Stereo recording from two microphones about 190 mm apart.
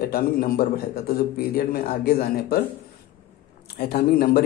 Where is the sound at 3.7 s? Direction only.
50° left (ahead or behind).